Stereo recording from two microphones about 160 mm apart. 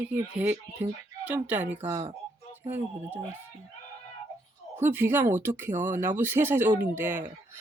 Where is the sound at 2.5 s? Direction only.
15° right (ahead or behind).